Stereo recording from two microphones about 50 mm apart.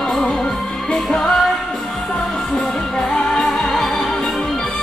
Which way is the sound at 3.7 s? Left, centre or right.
Centre.